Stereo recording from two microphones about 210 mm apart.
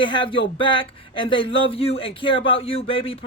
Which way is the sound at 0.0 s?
25° left (ahead or behind).